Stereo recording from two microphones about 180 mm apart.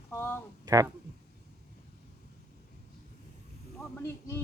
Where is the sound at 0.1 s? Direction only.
15° left (ahead or behind).